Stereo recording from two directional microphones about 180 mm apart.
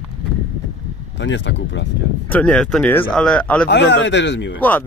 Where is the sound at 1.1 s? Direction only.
85° left.